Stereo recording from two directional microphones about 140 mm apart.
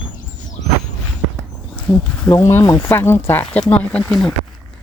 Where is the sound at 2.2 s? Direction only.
20° left (ahead or behind); by 4.3 s 5° left (ahead or behind).